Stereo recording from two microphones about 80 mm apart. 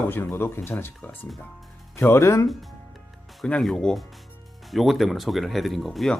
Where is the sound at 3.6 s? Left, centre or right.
Centre.